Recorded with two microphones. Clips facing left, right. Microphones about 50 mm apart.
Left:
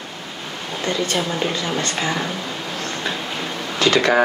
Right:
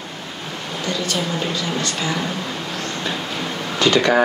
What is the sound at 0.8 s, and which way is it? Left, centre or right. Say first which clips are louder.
Speech: left 2 dB; left.